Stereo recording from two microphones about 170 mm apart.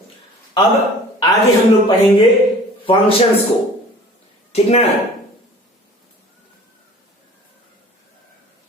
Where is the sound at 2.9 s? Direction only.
30° left (ahead or behind).